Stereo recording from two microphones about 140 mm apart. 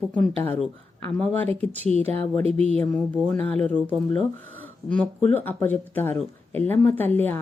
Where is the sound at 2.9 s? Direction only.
Centre (ahead or behind).